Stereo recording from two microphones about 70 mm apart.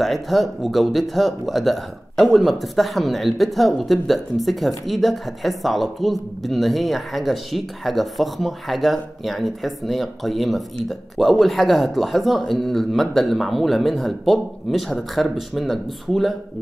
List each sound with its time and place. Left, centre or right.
0.0 s speech: centre